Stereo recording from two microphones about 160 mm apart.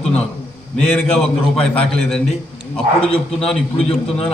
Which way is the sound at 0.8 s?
5° left (ahead or behind).